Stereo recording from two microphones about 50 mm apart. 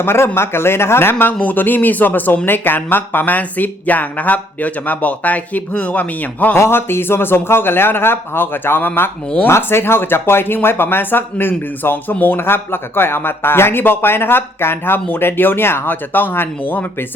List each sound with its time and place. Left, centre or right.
0.0 s speech: left
1.2 s speech: left
6.6 s speech: left